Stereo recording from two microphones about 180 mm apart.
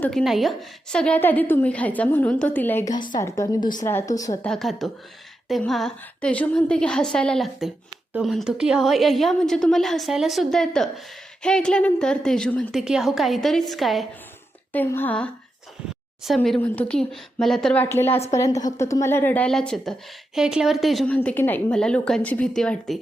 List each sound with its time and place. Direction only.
0.0 s a woman's voice: 5° left (ahead or behind); by 4.4 s 20° left (ahead or behind)
4.4 s a woman's voice: centre (ahead or behind)
14.7 s a woman's voice: 10° left (ahead or behind)
17.8 s a woman's voice: 15° left (ahead or behind)